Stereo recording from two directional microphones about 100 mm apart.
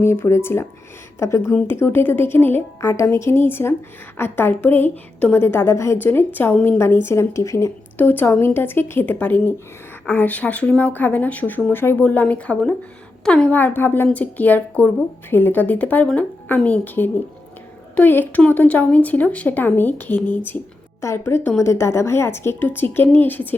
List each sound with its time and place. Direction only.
0.0 s a woman's voice: 25° left (ahead or behind)
7.9 s a woman's voice: 20° left (ahead or behind)
21.0 s a woman's voice: 30° left (ahead or behind)